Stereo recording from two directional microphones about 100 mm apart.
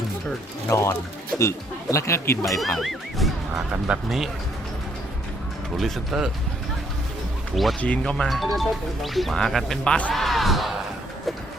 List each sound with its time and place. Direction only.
0.7 s speech: 30° left (ahead or behind)
2.7 s music: centre (ahead or behind)
3.8 s speech: 5° right (ahead or behind)
5.7 s speech: centre (ahead or behind)
7.5 s speech: centre (ahead or behind)
7.8 s speech: 10° left (ahead or behind)
8.3 s speech: centre (ahead or behind)